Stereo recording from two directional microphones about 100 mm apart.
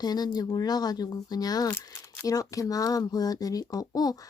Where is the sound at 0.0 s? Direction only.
40° left (ahead or behind).